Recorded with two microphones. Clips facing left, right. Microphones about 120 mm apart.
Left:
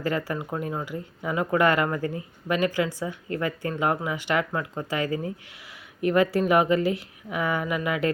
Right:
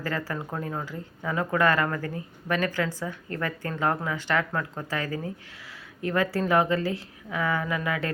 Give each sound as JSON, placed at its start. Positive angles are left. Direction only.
{"t": 0.0, "sound": "a woman's voice", "side_deg": 15}